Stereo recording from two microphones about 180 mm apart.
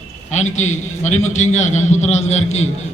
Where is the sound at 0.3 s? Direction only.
40° left (ahead or behind).